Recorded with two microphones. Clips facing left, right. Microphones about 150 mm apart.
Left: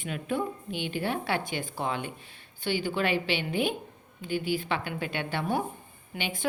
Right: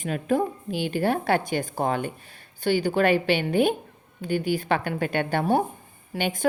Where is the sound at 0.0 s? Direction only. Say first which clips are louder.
Right 7 dB; 40° right (ahead or behind).